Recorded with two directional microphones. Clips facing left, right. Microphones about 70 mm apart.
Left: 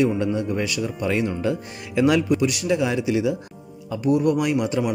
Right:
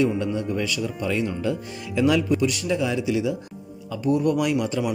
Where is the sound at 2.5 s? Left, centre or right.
Left.